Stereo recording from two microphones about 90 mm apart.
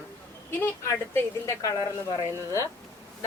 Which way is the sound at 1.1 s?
35° left (ahead or behind).